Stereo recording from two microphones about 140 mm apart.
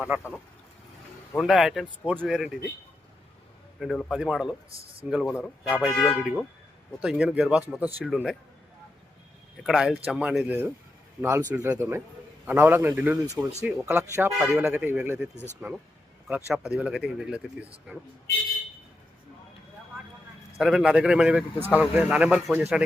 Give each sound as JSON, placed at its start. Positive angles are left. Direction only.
{"t": 0.0, "sound": "a man's voice", "side_deg": -10}
{"t": 1.4, "sound": "speech", "side_deg": 0}
{"t": 3.8, "sound": "a man's voice", "side_deg": 0}
{"t": 9.6, "sound": "a man's voice", "side_deg": 0}
{"t": 20.6, "sound": "a man's voice", "side_deg": -5}